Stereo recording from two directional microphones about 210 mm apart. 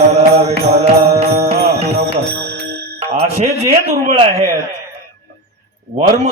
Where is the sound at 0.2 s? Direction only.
30° right (ahead or behind).